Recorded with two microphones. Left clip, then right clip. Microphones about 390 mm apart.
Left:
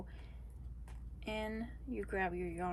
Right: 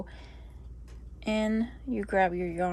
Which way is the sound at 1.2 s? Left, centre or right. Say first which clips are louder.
Right 12 dB; centre.